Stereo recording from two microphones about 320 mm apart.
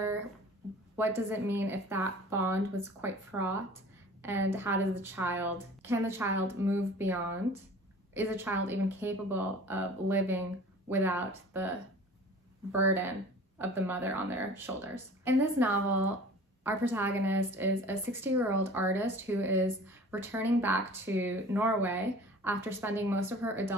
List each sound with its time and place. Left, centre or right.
0.9 s a woman's voice: centre
13.6 s a woman's voice: centre